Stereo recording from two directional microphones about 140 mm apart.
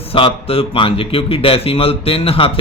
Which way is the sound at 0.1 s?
40° left (ahead or behind).